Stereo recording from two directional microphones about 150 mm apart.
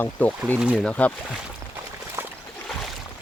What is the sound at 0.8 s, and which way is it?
Speech, 10° left (ahead or behind).